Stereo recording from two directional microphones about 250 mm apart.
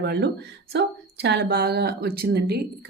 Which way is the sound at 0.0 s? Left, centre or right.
Right.